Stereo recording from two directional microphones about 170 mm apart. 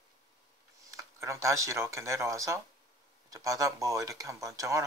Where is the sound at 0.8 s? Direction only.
15° right (ahead or behind).